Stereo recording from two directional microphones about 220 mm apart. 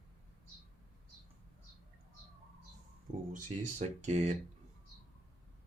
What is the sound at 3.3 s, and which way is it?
Speech, 30° right (ahead or behind).